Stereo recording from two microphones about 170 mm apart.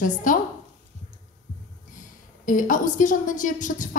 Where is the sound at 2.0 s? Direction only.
50° left (ahead or behind).